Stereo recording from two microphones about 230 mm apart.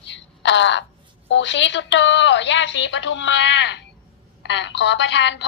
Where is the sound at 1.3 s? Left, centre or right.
Left.